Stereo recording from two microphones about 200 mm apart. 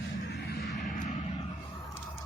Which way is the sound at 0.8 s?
40° left (ahead or behind).